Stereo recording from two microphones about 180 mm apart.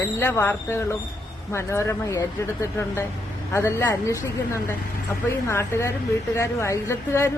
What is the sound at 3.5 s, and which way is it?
Speech, 15° left (ahead or behind).